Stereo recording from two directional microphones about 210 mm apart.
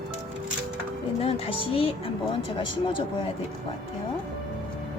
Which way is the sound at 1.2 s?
30° left (ahead or behind).